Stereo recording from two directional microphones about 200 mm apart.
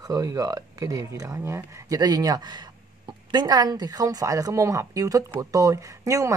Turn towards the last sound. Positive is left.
turn(degrees=-15)  # may be behind; listen again after turning